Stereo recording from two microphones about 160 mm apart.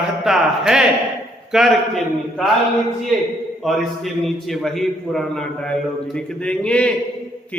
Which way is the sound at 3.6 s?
Centre (ahead or behind).